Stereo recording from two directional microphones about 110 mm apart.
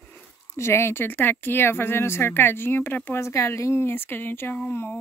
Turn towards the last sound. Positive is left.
turn(degrees=20)  # may be behind; listen again after turning